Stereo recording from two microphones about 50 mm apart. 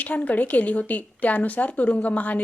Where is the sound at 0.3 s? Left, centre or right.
Left.